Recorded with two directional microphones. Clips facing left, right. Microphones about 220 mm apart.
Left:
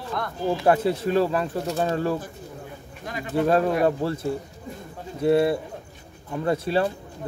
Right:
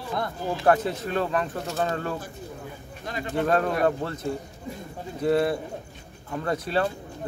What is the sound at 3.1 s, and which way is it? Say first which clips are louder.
Speech: left 3 dB; 5° left (ahead or behind).